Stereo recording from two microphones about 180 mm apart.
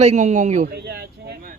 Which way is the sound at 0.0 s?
40° right (ahead or behind).